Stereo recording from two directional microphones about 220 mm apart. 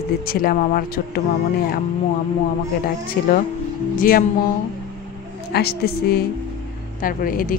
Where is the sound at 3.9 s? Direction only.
40° left (ahead or behind).